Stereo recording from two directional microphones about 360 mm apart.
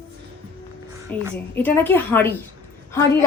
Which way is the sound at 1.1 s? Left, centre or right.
Centre.